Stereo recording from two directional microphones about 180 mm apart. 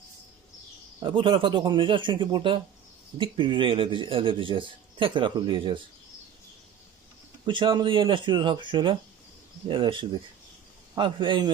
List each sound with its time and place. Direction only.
0.9 s a man's voice: 25° right (ahead or behind)
7.4 s a man's voice: 25° right (ahead or behind)